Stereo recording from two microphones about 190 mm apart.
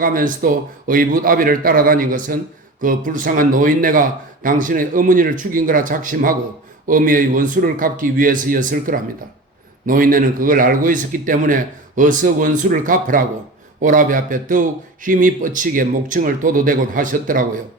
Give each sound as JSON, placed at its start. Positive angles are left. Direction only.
{"t": 0.0, "sound": "a man's voice", "side_deg": -45}